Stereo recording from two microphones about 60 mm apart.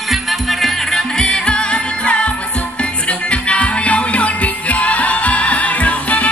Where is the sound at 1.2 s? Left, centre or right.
Centre.